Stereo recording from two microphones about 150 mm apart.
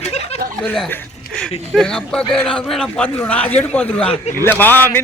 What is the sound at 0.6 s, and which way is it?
A man's voice, 10° left (ahead or behind).